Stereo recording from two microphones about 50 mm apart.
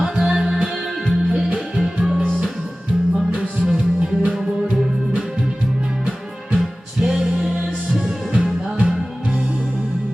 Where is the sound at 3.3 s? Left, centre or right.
Right.